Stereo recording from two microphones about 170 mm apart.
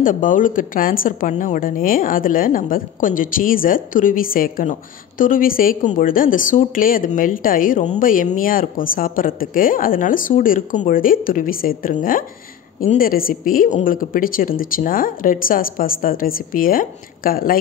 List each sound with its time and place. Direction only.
0.0 s a woman's voice: 50° left (ahead or behind)